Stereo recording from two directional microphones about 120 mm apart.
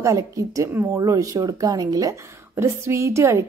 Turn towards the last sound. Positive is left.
turn(degrees=-25)  # may be behind; listen again after turning